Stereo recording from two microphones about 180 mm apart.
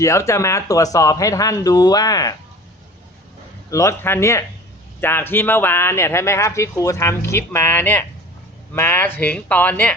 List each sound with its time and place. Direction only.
0.0 s speech: 15° left (ahead or behind)
3.7 s speech: 15° left (ahead or behind)